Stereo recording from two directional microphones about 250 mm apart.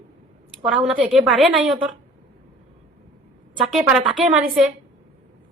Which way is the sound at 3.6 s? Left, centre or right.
Centre.